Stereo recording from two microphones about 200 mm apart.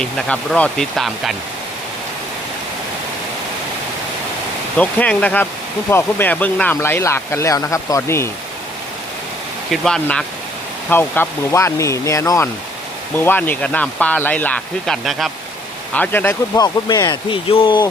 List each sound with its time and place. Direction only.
0.0 s speech: 5° left (ahead or behind)
4.8 s speech: 5° left (ahead or behind)
9.8 s speech: 5° left (ahead or behind); by 17.8 s 25° left (ahead or behind)